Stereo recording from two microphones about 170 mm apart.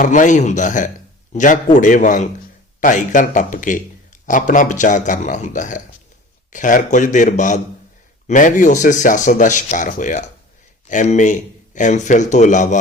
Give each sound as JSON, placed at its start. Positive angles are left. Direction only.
{"t": 0.0, "sound": "a man's voice", "side_deg": 50}